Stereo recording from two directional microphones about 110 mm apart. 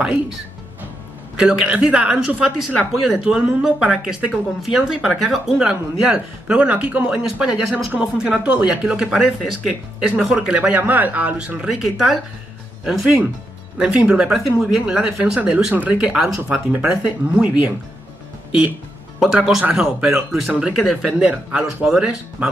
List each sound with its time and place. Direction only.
1.4 s speech: 10° right (ahead or behind)
19.1 s speech: 5° right (ahead or behind)